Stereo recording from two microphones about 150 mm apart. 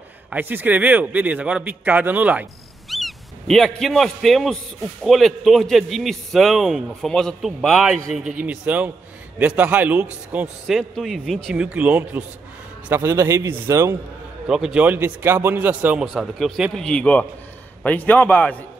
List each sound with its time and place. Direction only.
0.3 s a man's voice: 15° right (ahead or behind)
2.9 s a man's voice: centre (ahead or behind); by 13.9 s 20° right (ahead or behind)
14.5 s a man's voice: 5° right (ahead or behind)